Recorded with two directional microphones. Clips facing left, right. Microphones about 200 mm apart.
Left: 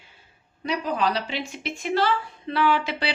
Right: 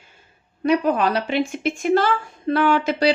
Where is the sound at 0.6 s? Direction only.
55° right (ahead or behind).